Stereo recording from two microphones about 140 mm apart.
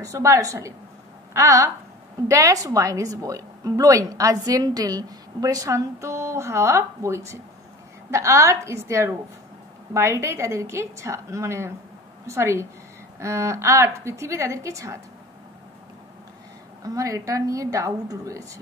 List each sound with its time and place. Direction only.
0.0 s a woman's voice: 20° right (ahead or behind)
16.8 s a woman's voice: 25° right (ahead or behind)